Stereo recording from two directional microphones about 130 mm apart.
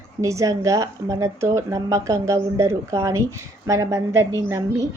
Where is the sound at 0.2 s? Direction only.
25° right (ahead or behind).